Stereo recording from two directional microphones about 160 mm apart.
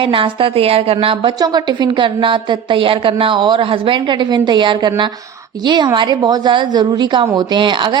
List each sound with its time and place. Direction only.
0.0 s a woman's voice: 35° right (ahead or behind)
1.4 s a woman's voice: 25° right (ahead or behind)